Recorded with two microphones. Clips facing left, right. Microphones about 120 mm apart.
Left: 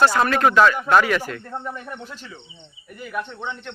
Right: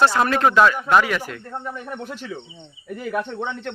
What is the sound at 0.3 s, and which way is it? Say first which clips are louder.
Speech: even; 20° right (ahead or behind).